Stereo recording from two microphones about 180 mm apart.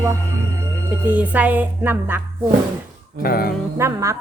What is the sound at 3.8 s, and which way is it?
Speech, 15° right (ahead or behind).